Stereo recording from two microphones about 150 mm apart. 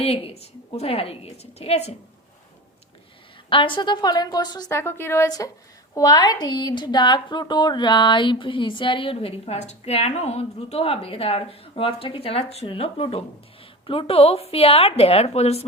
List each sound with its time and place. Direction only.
0.0 s speech: 40° left (ahead or behind)
3.5 s a woman's voice: 35° left (ahead or behind)